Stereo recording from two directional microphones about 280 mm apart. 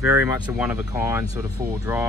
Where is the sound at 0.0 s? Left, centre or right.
Centre.